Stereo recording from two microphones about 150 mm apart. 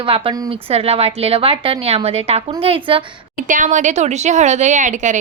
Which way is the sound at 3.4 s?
60° right (ahead or behind).